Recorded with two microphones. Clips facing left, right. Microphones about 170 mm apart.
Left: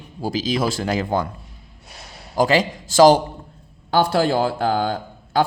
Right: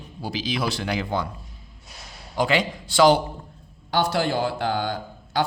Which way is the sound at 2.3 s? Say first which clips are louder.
Left 5 dB; 40° left (ahead or behind).